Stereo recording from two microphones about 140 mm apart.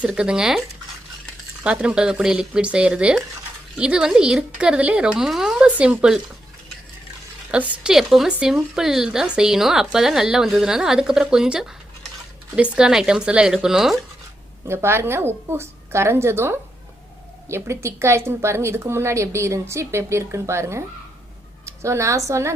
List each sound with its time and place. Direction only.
0.0 s a woman's voice: 5° right (ahead or behind)
1.6 s speech: 10° right (ahead or behind)
7.5 s a woman's voice: 10° right (ahead or behind)
12.7 s a woman's voice: 5° right (ahead or behind)
14.7 s a woman's voice: 15° right (ahead or behind)